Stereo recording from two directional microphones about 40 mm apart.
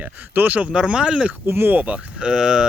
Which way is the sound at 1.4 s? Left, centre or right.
Right.